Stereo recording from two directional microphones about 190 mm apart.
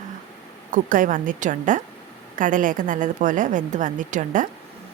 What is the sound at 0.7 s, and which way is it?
A woman's voice, 45° right (ahead or behind).